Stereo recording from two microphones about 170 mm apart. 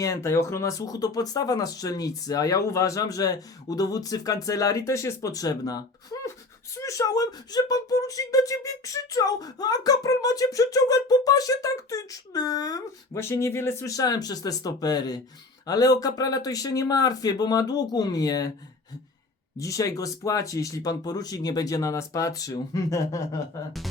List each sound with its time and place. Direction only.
0.0 s speech: 20° left (ahead or behind)
19.5 s speech: 20° left (ahead or behind)